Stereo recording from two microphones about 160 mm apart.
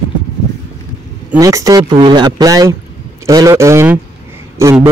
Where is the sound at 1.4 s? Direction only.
20° right (ahead or behind).